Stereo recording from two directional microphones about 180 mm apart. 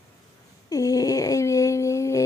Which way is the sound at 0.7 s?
20° left (ahead or behind).